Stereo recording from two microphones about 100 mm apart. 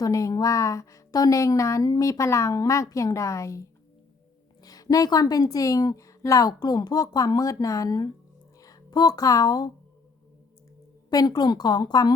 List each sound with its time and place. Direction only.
0.0 s a woman's voice: 35° left (ahead or behind)
11.1 s a woman's voice: 40° left (ahead or behind)